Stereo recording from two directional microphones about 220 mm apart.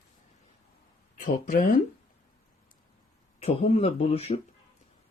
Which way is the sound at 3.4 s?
30° left (ahead or behind).